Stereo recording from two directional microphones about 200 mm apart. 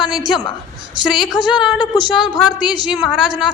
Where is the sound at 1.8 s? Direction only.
20° left (ahead or behind).